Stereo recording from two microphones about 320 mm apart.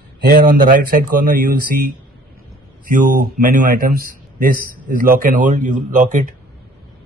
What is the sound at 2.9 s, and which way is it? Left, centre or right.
A man's voice, right.